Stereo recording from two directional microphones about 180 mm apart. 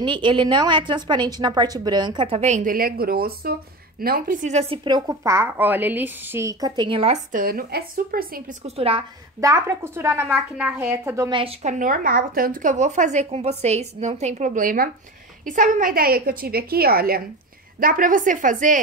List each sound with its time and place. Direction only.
0.0 s a woman's voice: 25° right (ahead or behind)
4.8 s a woman's voice: 20° right (ahead or behind)
7.3 s a woman's voice: 55° right (ahead or behind)
8.6 s speech: 30° right (ahead or behind)
9.4 s a woman's voice: 15° right (ahead or behind)
11.2 s a woman's voice: 30° right (ahead or behind)
11.6 s a woman's voice: 50° right (ahead or behind)